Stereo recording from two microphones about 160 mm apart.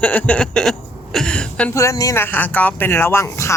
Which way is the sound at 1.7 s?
20° left (ahead or behind).